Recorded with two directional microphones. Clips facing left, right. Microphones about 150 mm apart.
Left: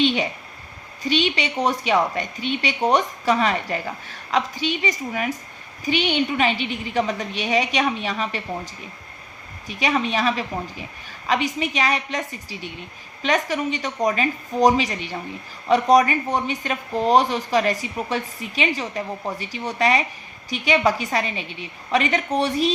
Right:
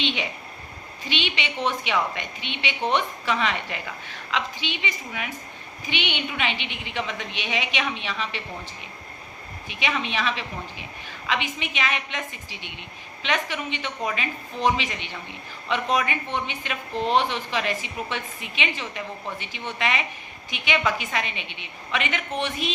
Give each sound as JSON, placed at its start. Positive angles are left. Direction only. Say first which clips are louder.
{"t": 0.0, "sound": "speech", "louder": "left 8 dB", "side_deg": 40}
{"t": 9.6, "sound": "speech", "louder": "left 6 dB", "side_deg": 40}